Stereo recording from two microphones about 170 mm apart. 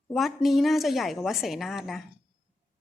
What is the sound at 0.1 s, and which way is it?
A woman's voice, centre (ahead or behind).